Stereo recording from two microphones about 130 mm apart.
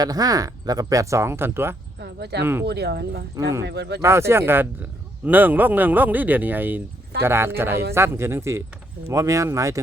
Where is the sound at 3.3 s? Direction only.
25° right (ahead or behind).